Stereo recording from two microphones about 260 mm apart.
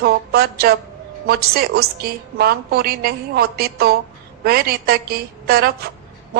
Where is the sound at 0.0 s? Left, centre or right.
Right.